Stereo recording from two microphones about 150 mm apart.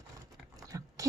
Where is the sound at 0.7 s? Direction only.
25° right (ahead or behind).